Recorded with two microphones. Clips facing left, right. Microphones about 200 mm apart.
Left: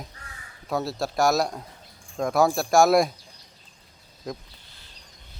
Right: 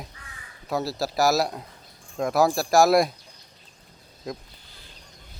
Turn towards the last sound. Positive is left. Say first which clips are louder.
# even
turn(degrees=0)  # may be behind; listen again after turning